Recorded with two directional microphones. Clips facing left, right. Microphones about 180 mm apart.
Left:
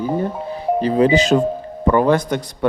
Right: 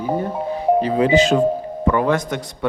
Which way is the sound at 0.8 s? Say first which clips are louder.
Left 1 dB; 35° left (ahead or behind).